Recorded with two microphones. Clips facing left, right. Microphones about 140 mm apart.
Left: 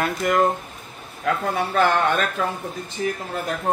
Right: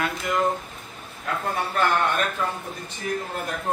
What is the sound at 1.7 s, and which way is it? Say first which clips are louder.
Speech: left 4 dB; 90° left.